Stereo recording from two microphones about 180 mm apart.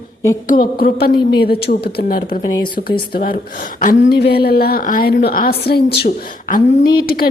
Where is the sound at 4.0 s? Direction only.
65° left (ahead or behind).